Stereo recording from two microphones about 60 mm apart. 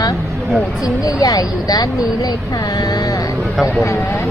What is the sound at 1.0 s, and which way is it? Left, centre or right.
Speech, left.